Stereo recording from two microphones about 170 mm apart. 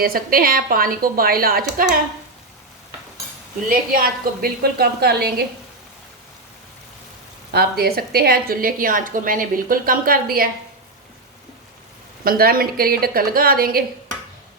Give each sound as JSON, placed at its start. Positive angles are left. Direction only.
{"t": 0.0, "sound": "a woman's voice", "side_deg": -60}
{"t": 3.7, "sound": "a woman's voice", "side_deg": -60}
{"t": 7.5, "sound": "a woman's voice", "side_deg": -65}
{"t": 12.2, "sound": "a woman's voice", "side_deg": -60}